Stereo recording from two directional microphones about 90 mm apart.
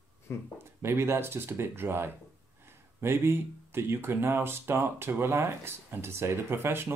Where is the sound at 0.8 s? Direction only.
30° right (ahead or behind).